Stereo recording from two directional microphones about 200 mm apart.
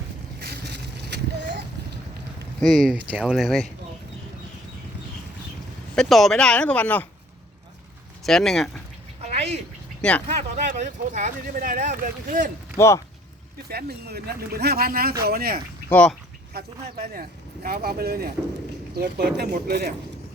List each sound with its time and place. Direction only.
0.3 s a sound: 55° right (ahead or behind)
2.6 s speech: centre (ahead or behind)
6.0 s speech: centre (ahead or behind)
8.2 s speech: centre (ahead or behind)
9.2 s cat: 30° right (ahead or behind)
10.0 s speech: 5° left (ahead or behind)
10.2 s speech: 35° right (ahead or behind)
12.7 s speech: 15° left (ahead or behind)
13.7 s speech: 50° right (ahead or behind)
15.9 s speech: 5° left (ahead or behind)
16.6 s speech: 45° right (ahead or behind)